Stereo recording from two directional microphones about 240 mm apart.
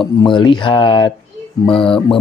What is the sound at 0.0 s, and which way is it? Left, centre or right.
Speech, centre.